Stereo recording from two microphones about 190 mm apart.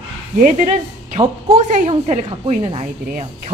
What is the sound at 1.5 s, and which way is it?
A woman's voice, 40° right (ahead or behind).